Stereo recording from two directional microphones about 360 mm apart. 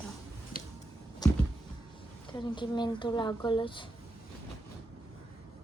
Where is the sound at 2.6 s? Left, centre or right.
Centre.